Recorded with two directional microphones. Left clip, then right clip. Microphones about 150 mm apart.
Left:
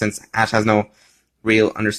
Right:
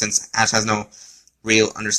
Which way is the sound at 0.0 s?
45° left (ahead or behind).